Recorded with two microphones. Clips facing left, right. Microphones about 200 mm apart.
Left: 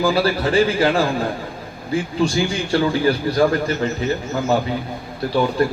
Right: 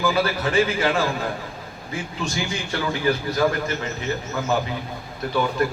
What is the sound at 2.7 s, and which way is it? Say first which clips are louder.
Speech: left 9 dB; 30° left (ahead or behind).